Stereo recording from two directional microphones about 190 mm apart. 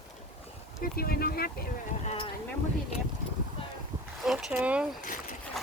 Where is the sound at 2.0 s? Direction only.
30° left (ahead or behind).